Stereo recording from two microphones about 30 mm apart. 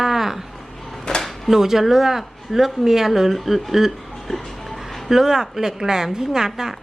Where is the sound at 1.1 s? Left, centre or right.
Left.